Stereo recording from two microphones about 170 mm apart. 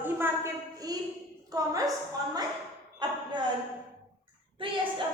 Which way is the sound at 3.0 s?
25° right (ahead or behind).